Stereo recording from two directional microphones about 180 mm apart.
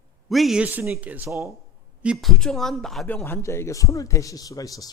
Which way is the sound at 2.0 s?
Centre (ahead or behind).